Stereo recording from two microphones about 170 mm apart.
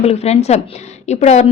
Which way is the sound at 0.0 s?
35° left (ahead or behind).